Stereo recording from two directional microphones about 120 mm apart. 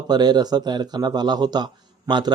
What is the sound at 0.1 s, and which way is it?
A man's voice, 35° right (ahead or behind).